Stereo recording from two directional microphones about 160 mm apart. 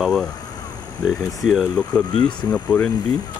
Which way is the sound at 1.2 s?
20° left (ahead or behind).